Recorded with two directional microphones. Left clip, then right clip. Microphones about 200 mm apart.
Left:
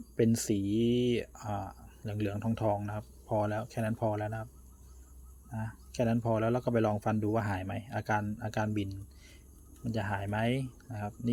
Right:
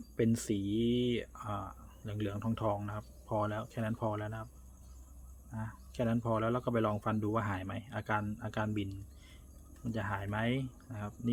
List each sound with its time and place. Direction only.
0.2 s speech: 20° left (ahead or behind)
5.5 s speech: 20° left (ahead or behind)